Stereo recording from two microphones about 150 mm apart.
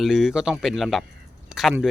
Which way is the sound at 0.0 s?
5° right (ahead or behind).